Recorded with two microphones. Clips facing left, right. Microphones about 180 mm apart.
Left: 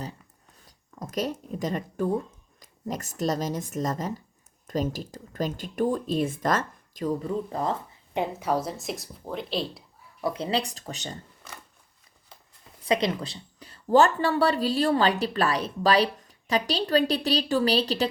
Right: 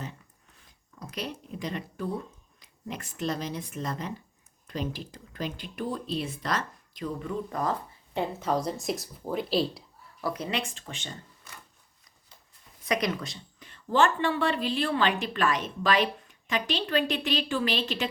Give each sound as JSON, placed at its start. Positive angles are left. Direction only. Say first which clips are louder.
{"t": 0.6, "sound": "speech", "louder": "left 5 dB", "side_deg": 45}
{"t": 10.2, "sound": "speech", "louder": "left 4 dB", "side_deg": 25}
{"t": 12.8, "sound": "speech", "louder": "left 3 dB", "side_deg": 30}